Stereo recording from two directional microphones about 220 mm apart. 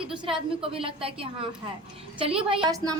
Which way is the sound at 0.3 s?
25° right (ahead or behind).